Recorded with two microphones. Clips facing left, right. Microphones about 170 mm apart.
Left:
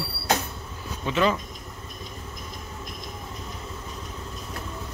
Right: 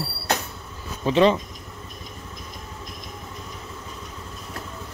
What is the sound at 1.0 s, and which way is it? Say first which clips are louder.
Speech: right 6 dB; 30° right (ahead or behind).